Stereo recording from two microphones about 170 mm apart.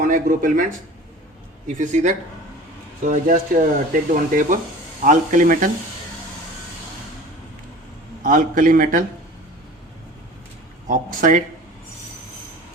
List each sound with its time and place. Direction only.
0.0 s speech: 50° right (ahead or behind)
8.2 s speech: 55° right (ahead or behind)
10.8 s speech: 55° right (ahead or behind)